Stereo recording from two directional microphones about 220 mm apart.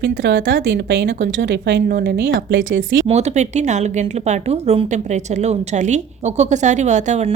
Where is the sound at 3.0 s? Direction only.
30° right (ahead or behind).